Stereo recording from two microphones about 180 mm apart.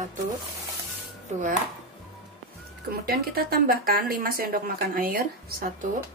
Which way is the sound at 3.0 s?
60° right (ahead or behind).